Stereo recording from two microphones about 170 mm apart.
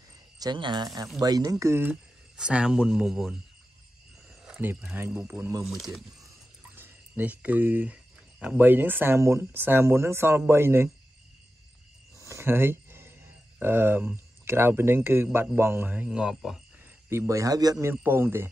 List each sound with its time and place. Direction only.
0.4 s a man's voice: 25° right (ahead or behind); by 3.3 s 5° right (ahead or behind)
4.5 s speech: 10° right (ahead or behind)
5.7 s speech: centre (ahead or behind)
12.2 s a sound: 15° right (ahead or behind)
13.6 s speech: 15° right (ahead or behind)
17.1 s a man's voice: 15° right (ahead or behind)